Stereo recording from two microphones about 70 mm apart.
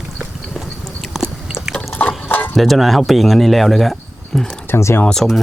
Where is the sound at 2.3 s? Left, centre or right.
Left.